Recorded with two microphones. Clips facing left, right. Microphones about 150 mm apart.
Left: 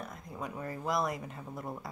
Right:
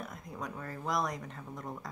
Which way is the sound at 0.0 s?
Centre (ahead or behind).